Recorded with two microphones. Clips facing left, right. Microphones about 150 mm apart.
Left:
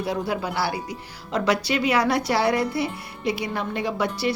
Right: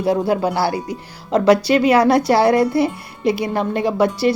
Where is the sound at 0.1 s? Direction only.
40° right (ahead or behind).